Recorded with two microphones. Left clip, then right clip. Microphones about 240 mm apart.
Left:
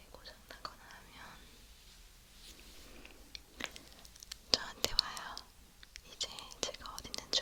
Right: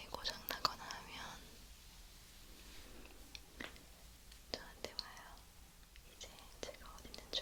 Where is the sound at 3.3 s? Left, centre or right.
Centre.